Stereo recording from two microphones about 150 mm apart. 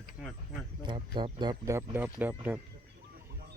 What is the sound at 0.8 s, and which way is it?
Speech, 30° right (ahead or behind).